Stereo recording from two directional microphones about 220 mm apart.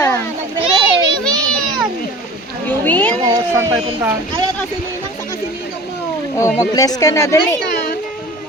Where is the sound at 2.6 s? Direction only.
10° left (ahead or behind).